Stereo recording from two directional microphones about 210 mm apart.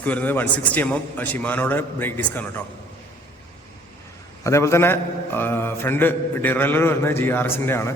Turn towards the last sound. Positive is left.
turn(degrees=10)  # may be behind; listen again after turning